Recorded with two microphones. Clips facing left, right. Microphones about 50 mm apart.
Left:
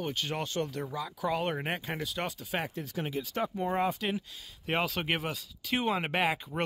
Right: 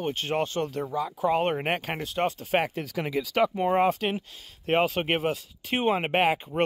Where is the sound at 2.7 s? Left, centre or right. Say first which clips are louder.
Right 6 dB; right.